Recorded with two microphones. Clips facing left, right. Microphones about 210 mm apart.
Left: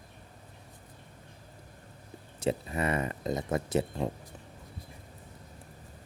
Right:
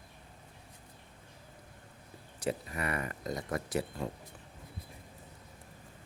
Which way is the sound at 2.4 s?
25° left (ahead or behind).